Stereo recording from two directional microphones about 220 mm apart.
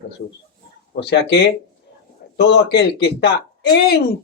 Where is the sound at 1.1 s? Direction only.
50° left (ahead or behind).